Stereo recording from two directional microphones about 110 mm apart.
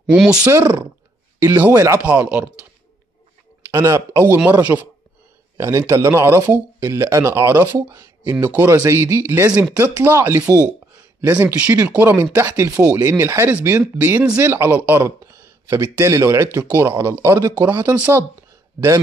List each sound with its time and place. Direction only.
0.0 s speech: 5° right (ahead or behind)
0.5 s speech: 20° right (ahead or behind)
2.0 s speech: 15° right (ahead or behind)
3.7 s speech: 25° right (ahead or behind)
7.7 s speech: 30° right (ahead or behind)
8.2 s speech: 15° right (ahead or behind)